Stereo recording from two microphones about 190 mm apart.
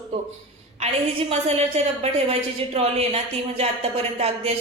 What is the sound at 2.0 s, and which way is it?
A woman's voice, 35° right (ahead or behind).